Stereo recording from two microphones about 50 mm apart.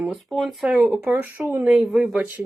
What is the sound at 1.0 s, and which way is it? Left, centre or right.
Speech, right.